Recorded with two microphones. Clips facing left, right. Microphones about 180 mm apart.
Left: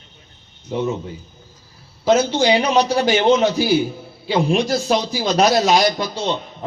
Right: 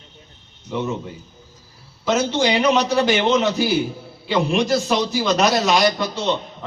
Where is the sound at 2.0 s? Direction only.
35° left (ahead or behind).